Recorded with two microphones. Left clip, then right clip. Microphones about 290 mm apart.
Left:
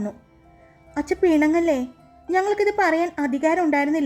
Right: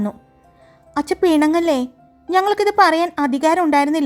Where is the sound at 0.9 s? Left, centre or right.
Centre.